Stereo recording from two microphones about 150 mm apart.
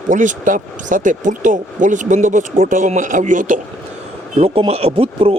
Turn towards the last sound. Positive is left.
turn(degrees=-35)  # may be behind; listen again after turning